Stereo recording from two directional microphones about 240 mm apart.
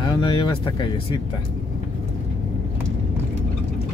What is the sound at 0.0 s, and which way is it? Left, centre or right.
Speech, centre.